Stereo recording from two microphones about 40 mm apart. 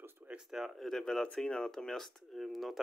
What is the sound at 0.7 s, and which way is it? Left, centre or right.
Speech, centre.